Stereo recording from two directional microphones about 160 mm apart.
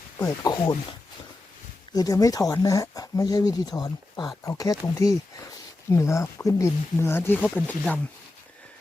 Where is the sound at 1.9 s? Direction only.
25° left (ahead or behind).